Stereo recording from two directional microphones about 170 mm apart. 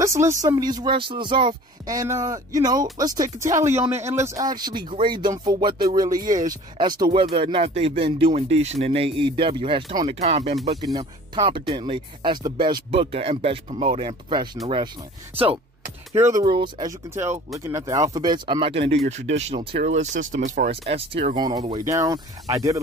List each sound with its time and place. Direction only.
0.0 s speech: 15° right (ahead or behind); by 10.8 s 35° right (ahead or behind)
10.8 s speech: 25° right (ahead or behind)
16.1 s speech: 15° right (ahead or behind)
16.4 s speech: 25° right (ahead or behind)